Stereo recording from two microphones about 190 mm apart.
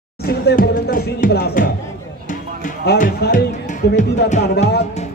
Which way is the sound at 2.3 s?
40° left (ahead or behind).